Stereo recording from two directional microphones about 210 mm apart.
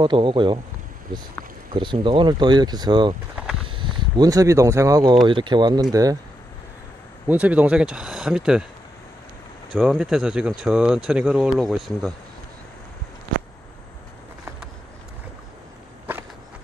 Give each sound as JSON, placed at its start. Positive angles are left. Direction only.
{"t": 0.0, "sound": "speech", "side_deg": -20}
{"t": 1.7, "sound": "speech", "side_deg": -20}
{"t": 7.2, "sound": "speech", "side_deg": -5}
{"t": 9.8, "sound": "speech", "side_deg": -5}